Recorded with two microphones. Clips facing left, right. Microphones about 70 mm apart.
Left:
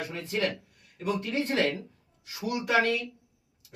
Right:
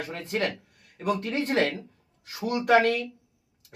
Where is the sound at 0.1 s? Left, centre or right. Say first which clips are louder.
Right 2 dB; right.